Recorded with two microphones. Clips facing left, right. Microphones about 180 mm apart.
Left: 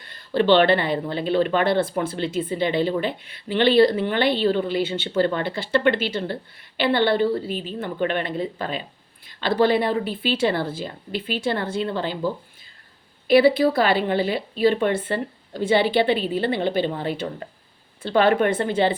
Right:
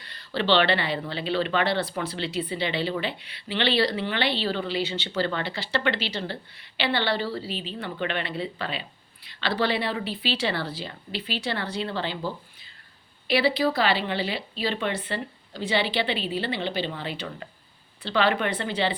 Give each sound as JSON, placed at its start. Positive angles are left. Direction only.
{"t": 0.0, "sound": "a sound", "side_deg": 50}
{"t": 0.3, "sound": "speech", "side_deg": 50}
{"t": 13.2, "sound": "speech", "side_deg": 50}